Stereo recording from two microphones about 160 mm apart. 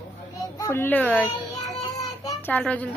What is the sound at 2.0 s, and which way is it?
Child singing, 20° left (ahead or behind).